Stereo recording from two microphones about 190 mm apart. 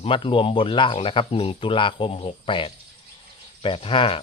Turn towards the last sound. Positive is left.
turn(degrees=30)  # may be behind; listen again after turning